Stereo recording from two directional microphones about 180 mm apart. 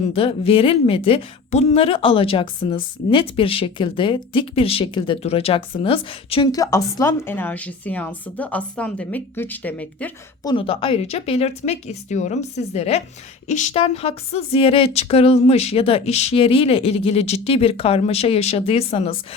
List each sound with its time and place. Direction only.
0.1 s a woman's voice: 30° left (ahead or behind); by 10.1 s 10° left (ahead or behind)
10.4 s speech: 30° left (ahead or behind)